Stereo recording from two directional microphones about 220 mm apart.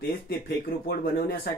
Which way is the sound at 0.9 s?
45° left (ahead or behind).